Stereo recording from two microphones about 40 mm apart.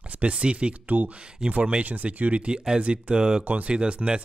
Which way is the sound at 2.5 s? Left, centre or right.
Centre.